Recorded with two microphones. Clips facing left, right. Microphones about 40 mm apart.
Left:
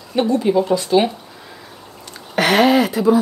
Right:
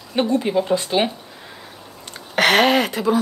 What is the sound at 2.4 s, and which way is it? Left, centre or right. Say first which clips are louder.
Speech: left 2 dB; right.